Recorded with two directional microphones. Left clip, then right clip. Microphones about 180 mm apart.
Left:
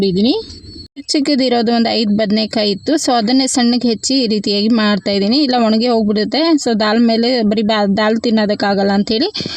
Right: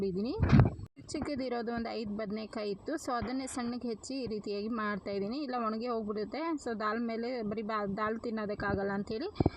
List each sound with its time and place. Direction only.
0.0 s speech: 20° right (ahead or behind)